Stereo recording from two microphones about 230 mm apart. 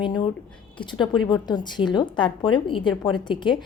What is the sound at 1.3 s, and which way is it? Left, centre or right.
A woman's voice, centre.